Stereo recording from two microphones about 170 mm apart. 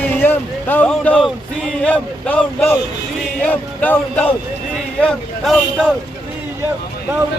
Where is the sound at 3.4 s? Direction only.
10° left (ahead or behind).